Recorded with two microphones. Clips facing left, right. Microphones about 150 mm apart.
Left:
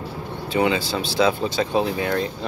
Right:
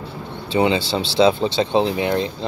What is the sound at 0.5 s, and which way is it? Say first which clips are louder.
Speech: right 3 dB; 25° right (ahead or behind).